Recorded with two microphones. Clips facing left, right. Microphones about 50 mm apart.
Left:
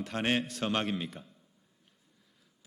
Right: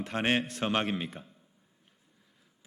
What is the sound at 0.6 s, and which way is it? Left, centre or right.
Speech, right.